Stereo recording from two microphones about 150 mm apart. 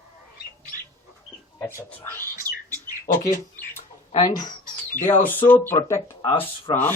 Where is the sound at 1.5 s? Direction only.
15° left (ahead or behind).